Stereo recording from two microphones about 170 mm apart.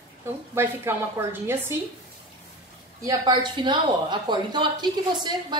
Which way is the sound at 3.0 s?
25° right (ahead or behind).